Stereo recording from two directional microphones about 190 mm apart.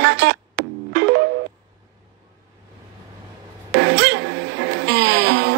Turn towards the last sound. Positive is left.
turn(degrees=-65)  # may be behind; listen again after turning